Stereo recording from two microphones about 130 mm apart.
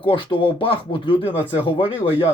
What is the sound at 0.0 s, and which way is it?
Speech, 40° left (ahead or behind).